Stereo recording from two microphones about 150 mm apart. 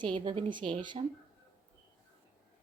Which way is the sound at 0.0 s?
35° right (ahead or behind).